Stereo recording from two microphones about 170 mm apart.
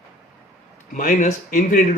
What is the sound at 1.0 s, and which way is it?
A man's voice, 50° left (ahead or behind).